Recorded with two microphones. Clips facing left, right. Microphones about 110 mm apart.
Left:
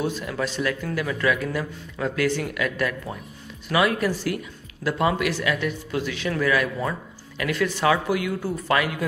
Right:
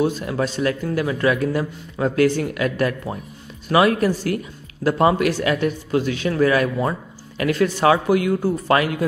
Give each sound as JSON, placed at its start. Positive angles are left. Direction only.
{"t": 0.0, "sound": "a man's voice", "side_deg": -35}